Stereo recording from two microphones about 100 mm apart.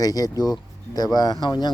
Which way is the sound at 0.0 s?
40° left (ahead or behind).